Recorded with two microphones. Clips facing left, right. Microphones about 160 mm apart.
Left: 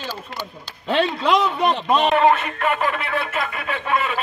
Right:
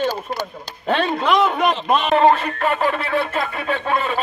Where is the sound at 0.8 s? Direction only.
50° right (ahead or behind).